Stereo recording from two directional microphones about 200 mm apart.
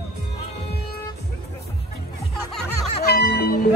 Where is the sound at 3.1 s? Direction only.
50° left (ahead or behind).